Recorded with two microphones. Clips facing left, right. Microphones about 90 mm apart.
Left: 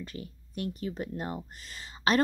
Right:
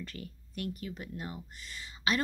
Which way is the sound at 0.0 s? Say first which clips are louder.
Left 3 dB; 20° left (ahead or behind).